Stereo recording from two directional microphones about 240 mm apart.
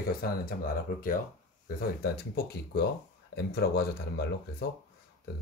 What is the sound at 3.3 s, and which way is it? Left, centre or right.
Speech, left.